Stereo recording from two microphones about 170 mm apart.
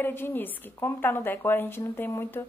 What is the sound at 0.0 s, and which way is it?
A woman's voice, 10° left (ahead or behind).